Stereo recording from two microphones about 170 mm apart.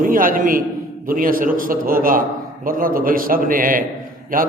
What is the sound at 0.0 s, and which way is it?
A man's voice, 55° right (ahead or behind).